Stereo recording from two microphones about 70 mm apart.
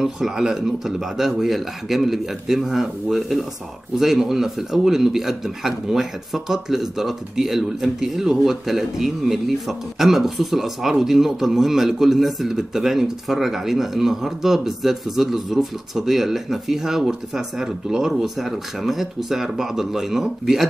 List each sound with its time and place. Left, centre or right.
0.0 s a man's voice: centre